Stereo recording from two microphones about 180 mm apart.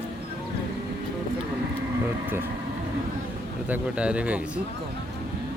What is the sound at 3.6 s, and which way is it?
Speech, 10° right (ahead or behind).